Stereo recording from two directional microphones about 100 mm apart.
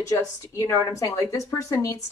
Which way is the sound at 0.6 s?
30° left (ahead or behind).